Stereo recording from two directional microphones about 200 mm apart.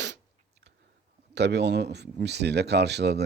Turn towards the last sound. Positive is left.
turn(degrees=-55)  # may be behind; listen again after turning